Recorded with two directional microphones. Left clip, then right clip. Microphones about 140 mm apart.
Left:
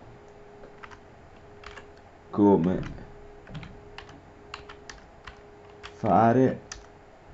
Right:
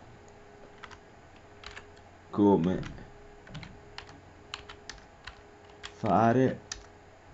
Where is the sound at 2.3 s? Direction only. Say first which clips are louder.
Left 3 dB; 20° right (ahead or behind).